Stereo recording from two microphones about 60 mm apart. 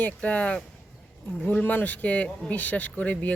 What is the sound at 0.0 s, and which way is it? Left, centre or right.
Speech, left.